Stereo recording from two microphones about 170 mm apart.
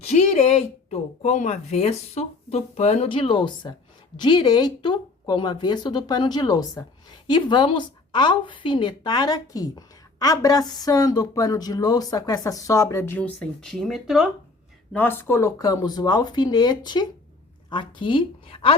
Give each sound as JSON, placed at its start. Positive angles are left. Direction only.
{"t": 0.0, "sound": "a woman's voice", "side_deg": 40}
{"t": 14.9, "sound": "a woman's voice", "side_deg": 10}